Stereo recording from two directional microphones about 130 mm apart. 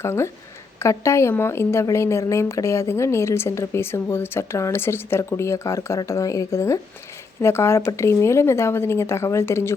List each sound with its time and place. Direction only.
0.0 s a woman's voice: 20° left (ahead or behind)